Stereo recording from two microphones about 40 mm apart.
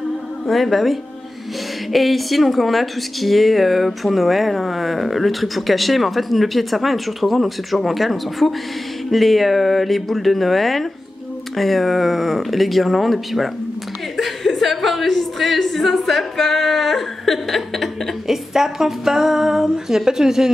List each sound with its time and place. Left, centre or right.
0.5 s speech: centre
14.1 s a sound: centre
18.2 s a woman's voice: centre